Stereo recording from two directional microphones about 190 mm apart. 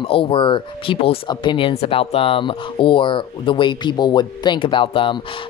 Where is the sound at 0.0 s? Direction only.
30° left (ahead or behind).